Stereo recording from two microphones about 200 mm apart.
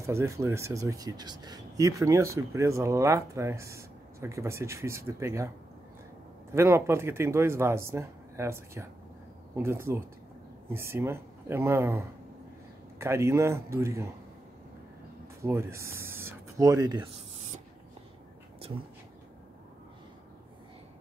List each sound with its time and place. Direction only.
0.0 s speech: 15° right (ahead or behind)
6.5 s speech: 15° right (ahead or behind)
13.0 s speech: 15° right (ahead or behind)
15.4 s speech: 15° right (ahead or behind)